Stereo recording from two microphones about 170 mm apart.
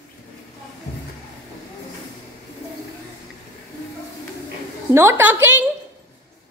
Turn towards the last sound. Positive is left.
turn(degrees=-15)  # may be behind; listen again after turning